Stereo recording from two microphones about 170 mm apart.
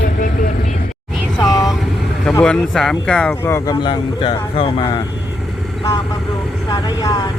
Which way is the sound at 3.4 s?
15° left (ahead or behind).